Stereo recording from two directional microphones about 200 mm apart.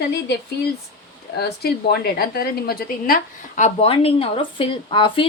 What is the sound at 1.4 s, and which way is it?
A woman's voice, 50° left (ahead or behind).